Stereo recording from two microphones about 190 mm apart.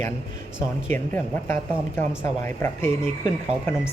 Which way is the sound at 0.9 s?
10° left (ahead or behind).